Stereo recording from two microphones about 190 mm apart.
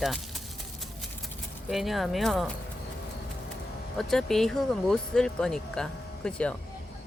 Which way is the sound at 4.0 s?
Centre (ahead or behind).